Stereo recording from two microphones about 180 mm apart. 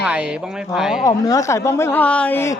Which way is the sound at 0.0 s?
5° right (ahead or behind).